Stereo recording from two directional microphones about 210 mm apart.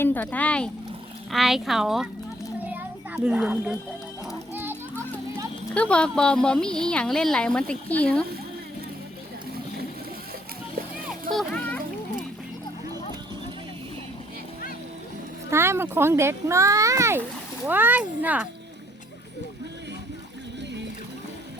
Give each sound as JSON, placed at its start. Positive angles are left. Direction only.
{"t": 0.0, "sound": "a woman's voice", "side_deg": 10}
{"t": 3.2, "sound": "a woman's voice", "side_deg": -5}
{"t": 4.7, "sound": "music", "side_deg": 10}
{"t": 5.7, "sound": "a woman's voice", "side_deg": 5}
{"t": 11.3, "sound": "music", "side_deg": 5}
{"t": 15.4, "sound": "speech", "side_deg": -10}